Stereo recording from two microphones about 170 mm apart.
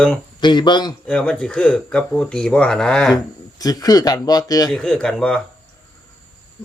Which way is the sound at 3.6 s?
20° left (ahead or behind).